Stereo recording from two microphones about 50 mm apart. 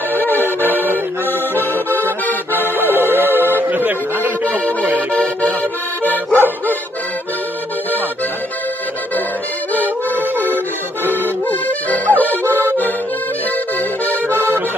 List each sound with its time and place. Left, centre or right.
0.1 s music: left
1.5 s accordion: left
2.8 s music: right
5.1 s music: left
6.3 s music: left
9.8 s music: left
10.3 s accordion: left
11.4 s music: left
14.3 s accordion: right